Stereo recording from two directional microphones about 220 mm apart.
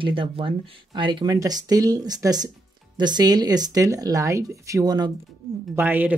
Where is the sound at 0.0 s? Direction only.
25° right (ahead or behind).